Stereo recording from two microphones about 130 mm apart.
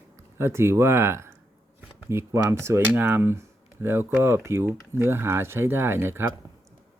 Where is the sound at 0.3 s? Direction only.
20° right (ahead or behind).